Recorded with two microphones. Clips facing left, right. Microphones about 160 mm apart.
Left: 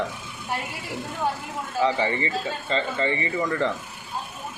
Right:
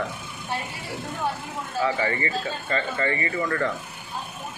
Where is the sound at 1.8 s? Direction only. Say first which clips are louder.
Left 2 dB; 25° left (ahead or behind).